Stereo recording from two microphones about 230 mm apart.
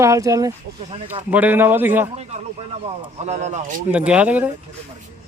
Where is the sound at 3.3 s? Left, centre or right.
Right.